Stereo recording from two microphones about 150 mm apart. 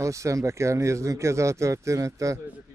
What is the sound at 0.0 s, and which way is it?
Speech, 20° right (ahead or behind).